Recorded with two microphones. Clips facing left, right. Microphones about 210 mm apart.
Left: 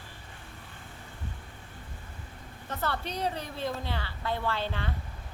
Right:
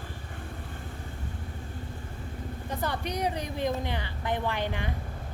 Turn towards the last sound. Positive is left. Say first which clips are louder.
# right 2 dB
turn(degrees=-15)  # may be behind; listen again after turning